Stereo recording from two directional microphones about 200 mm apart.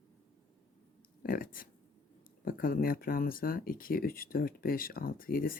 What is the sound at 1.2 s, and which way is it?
Speech, 45° left (ahead or behind).